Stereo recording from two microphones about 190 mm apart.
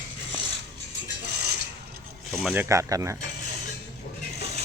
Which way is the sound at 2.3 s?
5° right (ahead or behind).